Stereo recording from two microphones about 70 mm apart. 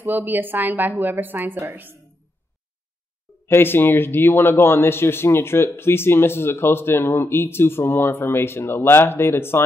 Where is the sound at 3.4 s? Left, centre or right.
Left.